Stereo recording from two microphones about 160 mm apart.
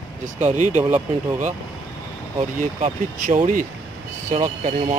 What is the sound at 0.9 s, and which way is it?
Speech, 15° right (ahead or behind).